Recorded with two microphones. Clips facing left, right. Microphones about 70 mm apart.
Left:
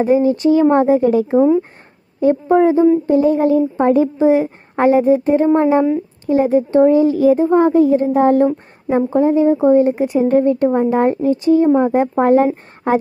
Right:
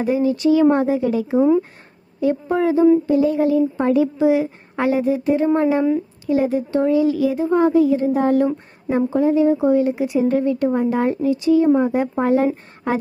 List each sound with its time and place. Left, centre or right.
0.0 s a woman's voice: left